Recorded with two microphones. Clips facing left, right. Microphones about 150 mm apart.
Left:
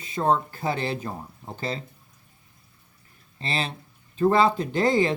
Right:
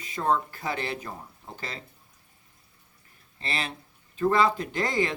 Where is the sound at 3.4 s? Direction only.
30° left (ahead or behind).